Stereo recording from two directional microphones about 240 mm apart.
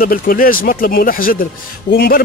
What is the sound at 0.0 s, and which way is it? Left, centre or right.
Speech, left.